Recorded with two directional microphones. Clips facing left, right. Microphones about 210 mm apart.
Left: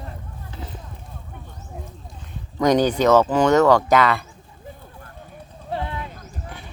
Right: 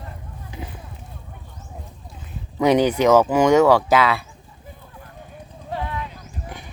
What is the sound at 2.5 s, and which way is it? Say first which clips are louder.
Speech: right 1 dB; 10° right (ahead or behind).